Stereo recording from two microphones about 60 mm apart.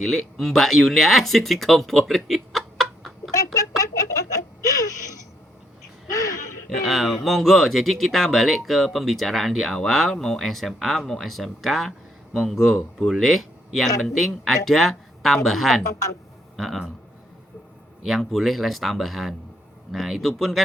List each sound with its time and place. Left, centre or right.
0.0 s speech: centre
3.3 s a sound: left
4.6 s whimper: left
6.1 s a sound: left
6.7 s speech: centre
18.0 s speech: centre